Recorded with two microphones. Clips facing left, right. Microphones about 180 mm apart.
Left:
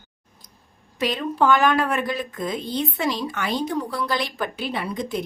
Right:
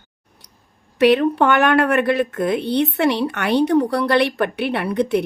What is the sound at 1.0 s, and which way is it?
Speech, 65° right (ahead or behind).